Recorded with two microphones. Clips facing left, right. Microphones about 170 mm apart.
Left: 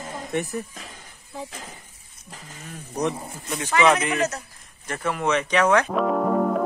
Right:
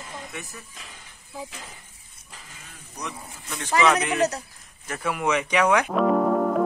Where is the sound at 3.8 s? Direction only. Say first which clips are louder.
Left 1 dB; centre (ahead or behind).